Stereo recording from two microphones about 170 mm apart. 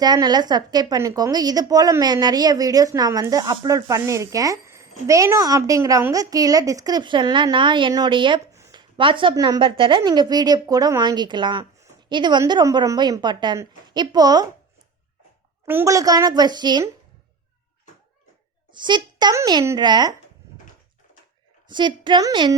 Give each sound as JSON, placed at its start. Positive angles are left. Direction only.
{"t": 0.0, "sound": "a woman's voice", "side_deg": -25}
{"t": 8.5, "sound": "a sound", "side_deg": -15}
{"t": 9.0, "sound": "a woman's voice", "side_deg": -30}
{"t": 15.6, "sound": "a woman's voice", "side_deg": -15}
{"t": 18.7, "sound": "a woman's voice", "side_deg": -25}
{"t": 21.7, "sound": "a woman's voice", "side_deg": -25}